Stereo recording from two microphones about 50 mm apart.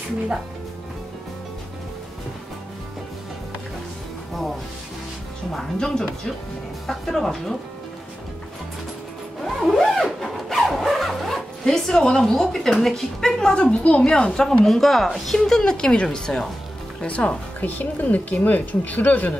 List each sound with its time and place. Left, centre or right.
5.8 s speech: centre
9.4 s zipper: centre
12.8 s speech: centre
17.6 s speech: left